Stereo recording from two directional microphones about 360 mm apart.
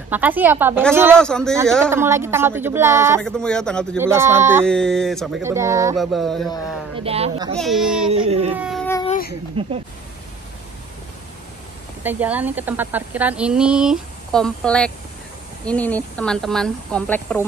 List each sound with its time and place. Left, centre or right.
0.1 s speech: centre
7.0 s speech: centre
7.5 s speech: centre
8.1 s speech: centre
8.5 s a sound: centre
9.6 s speech: centre
12.0 s speech: centre